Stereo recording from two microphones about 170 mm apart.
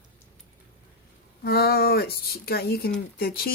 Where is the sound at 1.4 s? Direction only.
65° left (ahead or behind).